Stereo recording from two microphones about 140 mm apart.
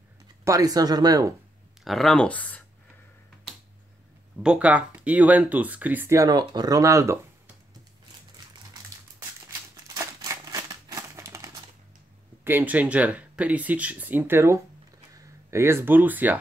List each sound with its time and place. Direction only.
0.5 s speech: 25° right (ahead or behind)
1.9 s speech: centre (ahead or behind)
4.4 s speech: 5° right (ahead or behind)
9.5 s a sound: 25° right (ahead or behind)
12.4 s speech: 15° right (ahead or behind)